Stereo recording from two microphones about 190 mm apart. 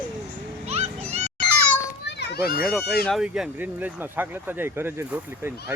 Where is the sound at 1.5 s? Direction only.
10° left (ahead or behind).